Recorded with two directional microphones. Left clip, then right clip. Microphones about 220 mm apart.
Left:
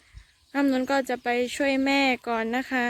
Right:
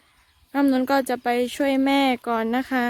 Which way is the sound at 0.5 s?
10° right (ahead or behind).